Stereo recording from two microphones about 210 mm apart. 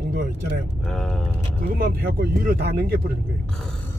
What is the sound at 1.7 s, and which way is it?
Speech, 45° right (ahead or behind).